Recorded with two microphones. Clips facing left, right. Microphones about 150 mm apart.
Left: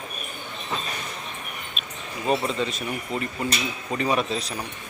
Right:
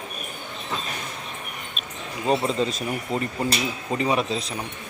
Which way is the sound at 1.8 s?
40° right (ahead or behind).